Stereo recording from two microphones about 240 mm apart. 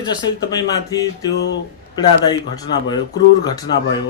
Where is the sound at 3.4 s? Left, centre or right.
Centre.